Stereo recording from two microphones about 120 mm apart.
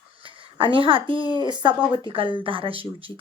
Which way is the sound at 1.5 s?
40° right (ahead or behind).